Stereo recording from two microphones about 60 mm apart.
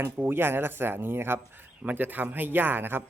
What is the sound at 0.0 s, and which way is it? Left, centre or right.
Speech, right.